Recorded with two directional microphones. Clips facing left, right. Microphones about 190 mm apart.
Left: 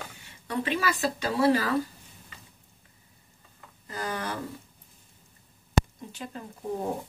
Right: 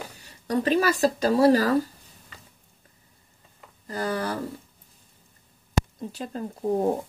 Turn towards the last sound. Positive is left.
turn(degrees=-35)  # may be behind; listen again after turning